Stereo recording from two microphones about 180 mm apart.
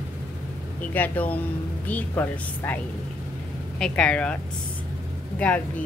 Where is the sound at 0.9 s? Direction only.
10° left (ahead or behind).